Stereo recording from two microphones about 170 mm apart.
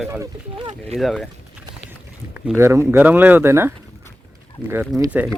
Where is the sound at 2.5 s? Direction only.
15° right (ahead or behind).